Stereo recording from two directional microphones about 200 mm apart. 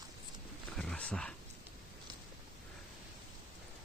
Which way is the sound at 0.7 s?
5° left (ahead or behind).